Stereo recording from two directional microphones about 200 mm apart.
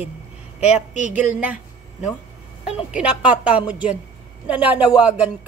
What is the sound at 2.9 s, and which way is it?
A woman's voice, 5° right (ahead or behind).